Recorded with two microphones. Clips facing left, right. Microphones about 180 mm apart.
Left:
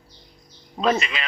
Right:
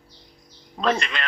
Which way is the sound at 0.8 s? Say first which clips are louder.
Left 2 dB; 5° left (ahead or behind).